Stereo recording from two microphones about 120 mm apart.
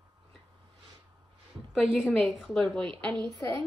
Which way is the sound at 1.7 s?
5° left (ahead or behind).